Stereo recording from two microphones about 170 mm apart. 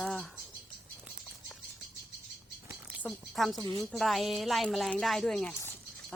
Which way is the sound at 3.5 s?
25° right (ahead or behind).